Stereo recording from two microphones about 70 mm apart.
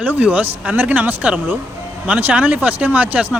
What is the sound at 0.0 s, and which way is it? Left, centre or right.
Speech, right.